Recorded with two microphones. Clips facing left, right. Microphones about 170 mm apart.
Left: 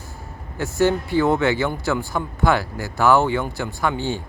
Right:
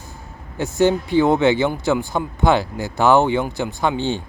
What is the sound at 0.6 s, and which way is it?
Speech, 20° right (ahead or behind).